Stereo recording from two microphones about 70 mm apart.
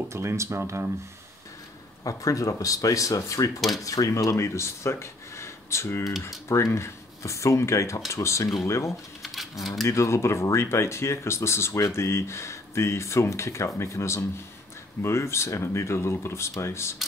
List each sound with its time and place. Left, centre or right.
0.1 s speech: right
2.0 s speech: left
9.2 s a sound: centre
9.8 s speech: left